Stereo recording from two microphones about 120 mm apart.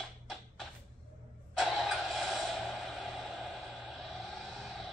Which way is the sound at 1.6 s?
Centre (ahead or behind).